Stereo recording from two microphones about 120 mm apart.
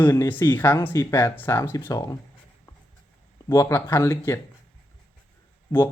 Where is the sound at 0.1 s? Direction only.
20° left (ahead or behind).